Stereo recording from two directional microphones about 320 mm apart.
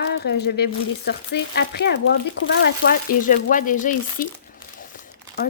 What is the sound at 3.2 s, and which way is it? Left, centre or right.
Speech, left.